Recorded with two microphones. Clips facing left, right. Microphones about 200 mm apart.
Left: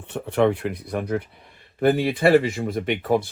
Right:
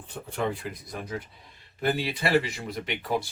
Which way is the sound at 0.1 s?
65° left (ahead or behind).